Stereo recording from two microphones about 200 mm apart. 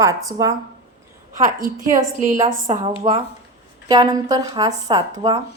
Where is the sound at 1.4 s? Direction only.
45° right (ahead or behind).